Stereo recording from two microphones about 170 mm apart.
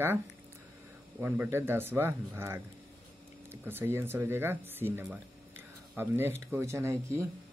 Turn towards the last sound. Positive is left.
turn(degrees=-15)  # may be behind; listen again after turning